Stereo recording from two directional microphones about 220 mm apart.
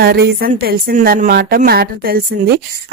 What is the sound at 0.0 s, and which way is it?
Speech, 45° right (ahead or behind).